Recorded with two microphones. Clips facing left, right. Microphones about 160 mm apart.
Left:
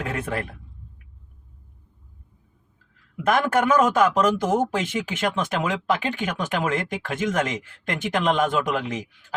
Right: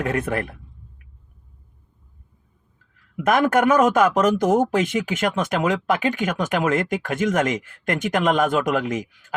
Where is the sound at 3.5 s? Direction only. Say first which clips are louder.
Right 2 dB; 55° right (ahead or behind).